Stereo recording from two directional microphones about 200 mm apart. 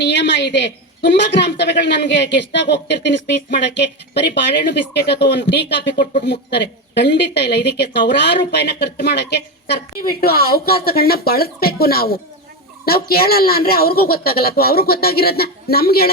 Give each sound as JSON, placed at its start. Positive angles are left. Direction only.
{"t": 0.0, "sound": "a woman's voice", "side_deg": 60}